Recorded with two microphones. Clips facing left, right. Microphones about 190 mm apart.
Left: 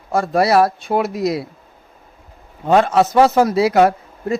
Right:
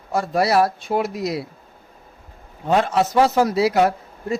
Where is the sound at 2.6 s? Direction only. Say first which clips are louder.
Left 5 dB; 75° left (ahead or behind).